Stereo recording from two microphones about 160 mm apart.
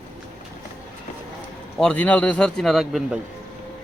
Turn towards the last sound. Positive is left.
turn(degrees=0)  # may be behind; listen again after turning